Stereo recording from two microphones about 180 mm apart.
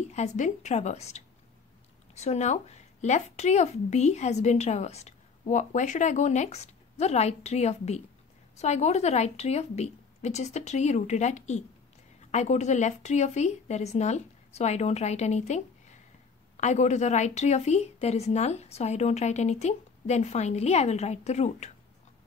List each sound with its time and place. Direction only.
0.1 s a woman's voice: 40° left (ahead or behind)